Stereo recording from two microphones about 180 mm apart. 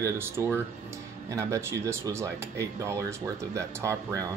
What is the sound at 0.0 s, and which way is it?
Speech, 15° right (ahead or behind).